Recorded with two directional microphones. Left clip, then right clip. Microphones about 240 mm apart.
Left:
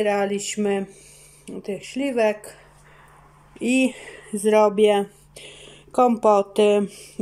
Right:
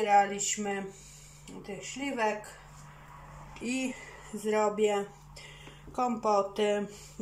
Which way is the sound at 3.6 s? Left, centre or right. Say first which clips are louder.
Left 13 dB; left.